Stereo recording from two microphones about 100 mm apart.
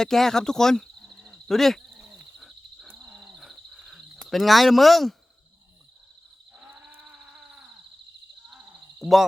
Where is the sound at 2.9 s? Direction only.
5° right (ahead or behind).